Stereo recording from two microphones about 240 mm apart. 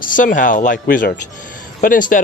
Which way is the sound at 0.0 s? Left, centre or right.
Left.